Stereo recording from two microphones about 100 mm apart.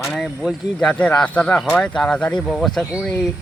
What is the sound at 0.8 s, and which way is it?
Speech, 10° left (ahead or behind).